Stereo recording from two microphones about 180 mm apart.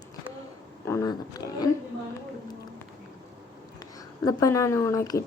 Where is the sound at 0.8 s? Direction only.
15° left (ahead or behind).